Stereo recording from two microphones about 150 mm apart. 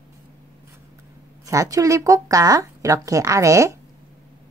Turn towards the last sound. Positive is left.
turn(degrees=-20)  # may be behind; listen again after turning